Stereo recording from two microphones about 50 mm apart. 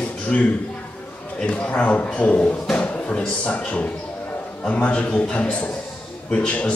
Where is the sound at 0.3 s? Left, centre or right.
Left.